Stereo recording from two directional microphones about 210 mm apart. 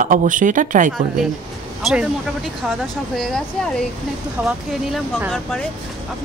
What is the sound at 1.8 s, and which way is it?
Speech, centre (ahead or behind).